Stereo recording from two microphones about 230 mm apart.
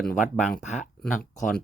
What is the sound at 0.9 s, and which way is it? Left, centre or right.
Speech, centre.